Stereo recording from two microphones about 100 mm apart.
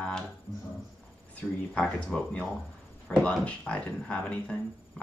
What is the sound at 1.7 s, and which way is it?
Speech, 5° left (ahead or behind).